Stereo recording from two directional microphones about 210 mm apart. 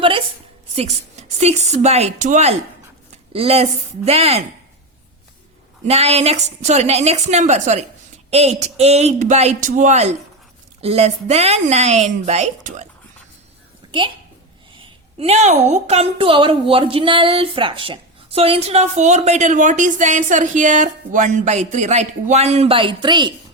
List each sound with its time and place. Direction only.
0.8 s a woman's voice: 30° right (ahead or behind)
5.9 s a woman's voice: 30° right (ahead or behind)
14.8 s a woman's voice: 30° right (ahead or behind)